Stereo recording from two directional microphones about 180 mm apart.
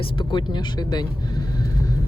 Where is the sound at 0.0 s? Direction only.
25° left (ahead or behind).